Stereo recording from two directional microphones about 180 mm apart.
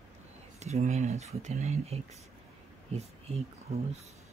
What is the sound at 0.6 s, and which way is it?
Speech, 40° right (ahead or behind).